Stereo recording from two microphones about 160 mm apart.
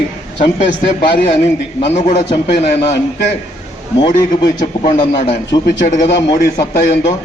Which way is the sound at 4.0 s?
25° left (ahead or behind).